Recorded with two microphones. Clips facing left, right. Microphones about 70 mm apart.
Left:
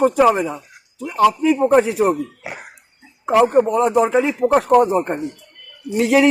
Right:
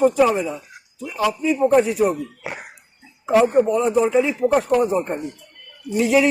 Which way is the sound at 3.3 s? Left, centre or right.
Left.